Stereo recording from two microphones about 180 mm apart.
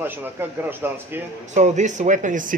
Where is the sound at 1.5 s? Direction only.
40° right (ahead or behind).